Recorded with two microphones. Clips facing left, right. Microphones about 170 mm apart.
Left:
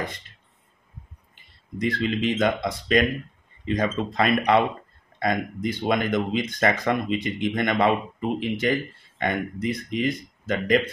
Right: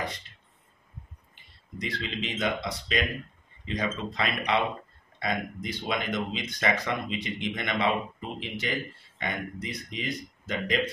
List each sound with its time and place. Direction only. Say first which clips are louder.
1.8 s speech: left 9 dB; 50° left (ahead or behind)